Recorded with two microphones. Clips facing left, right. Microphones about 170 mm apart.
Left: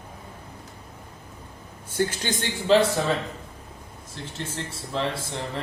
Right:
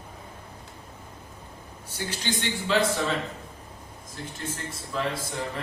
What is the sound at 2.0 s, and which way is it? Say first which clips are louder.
Speech: left 6 dB; 50° left (ahead or behind).